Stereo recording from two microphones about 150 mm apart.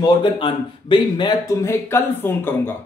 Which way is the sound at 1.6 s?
15° left (ahead or behind).